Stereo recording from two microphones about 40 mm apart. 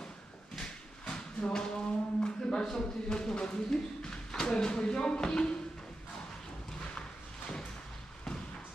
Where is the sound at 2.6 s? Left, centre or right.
Centre.